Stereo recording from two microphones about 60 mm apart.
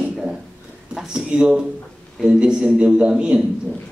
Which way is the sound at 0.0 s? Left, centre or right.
Centre.